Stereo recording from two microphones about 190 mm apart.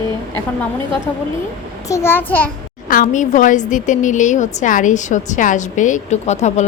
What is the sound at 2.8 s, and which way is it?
Speech, 45° left (ahead or behind).